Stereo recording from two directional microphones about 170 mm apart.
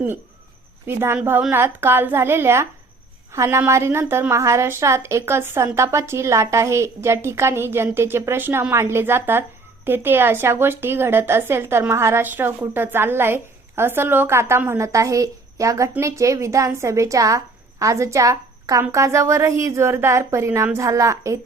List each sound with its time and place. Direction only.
0.9 s a woman's voice: 15° right (ahead or behind)